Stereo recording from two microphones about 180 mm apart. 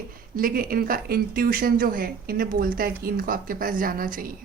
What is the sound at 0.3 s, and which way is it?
A woman's voice, 55° right (ahead or behind).